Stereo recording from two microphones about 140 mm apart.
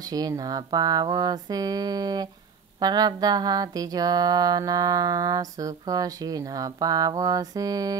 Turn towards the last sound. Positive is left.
turn(degrees=-25)  # may be behind; listen again after turning